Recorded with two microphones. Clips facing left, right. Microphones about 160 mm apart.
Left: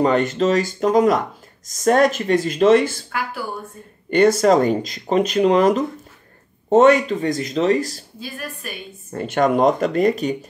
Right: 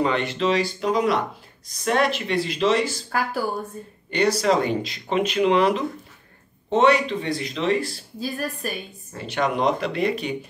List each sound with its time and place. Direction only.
0.0 s speech: 45° left (ahead or behind)
4.1 s speech: 50° left (ahead or behind)
8.2 s a woman's voice: 35° right (ahead or behind)
9.1 s speech: 50° left (ahead or behind)